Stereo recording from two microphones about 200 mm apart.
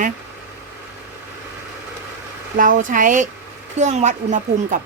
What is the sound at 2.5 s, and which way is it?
A woman's voice, 40° right (ahead or behind).